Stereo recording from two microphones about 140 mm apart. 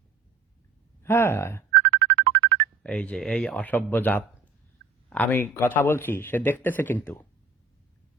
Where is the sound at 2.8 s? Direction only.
10° left (ahead or behind).